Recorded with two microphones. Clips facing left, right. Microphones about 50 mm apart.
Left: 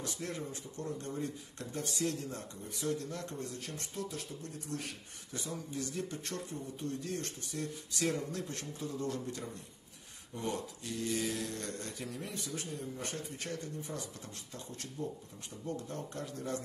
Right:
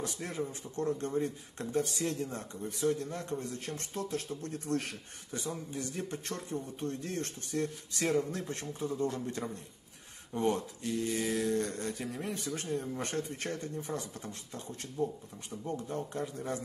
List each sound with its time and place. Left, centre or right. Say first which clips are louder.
0.0 s speech: right 3 dB; right
0.7 s a man's voice: right 8 dB; right
5.3 s a man's voice: right 3 dB; right
12.5 s a man's voice: right 6 dB; right